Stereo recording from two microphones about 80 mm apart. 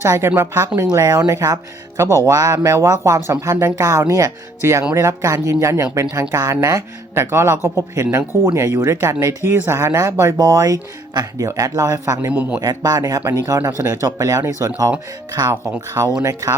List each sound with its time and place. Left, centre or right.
0.0 s speech: right
0.8 s speech: right
10.3 s speech: right
12.3 s a man's voice: centre
12.5 s speech: right